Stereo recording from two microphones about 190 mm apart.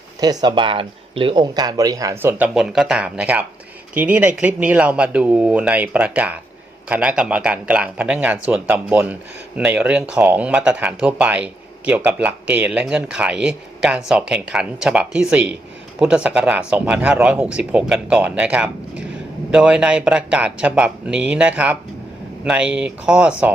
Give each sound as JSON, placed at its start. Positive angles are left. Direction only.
{"t": 0.2, "sound": "speech", "side_deg": -20}